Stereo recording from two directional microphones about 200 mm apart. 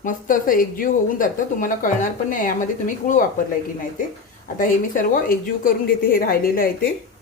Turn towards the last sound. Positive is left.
turn(degrees=45)  # may be behind; listen again after turning